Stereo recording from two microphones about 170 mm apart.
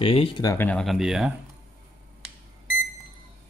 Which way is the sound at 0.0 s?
35° left (ahead or behind).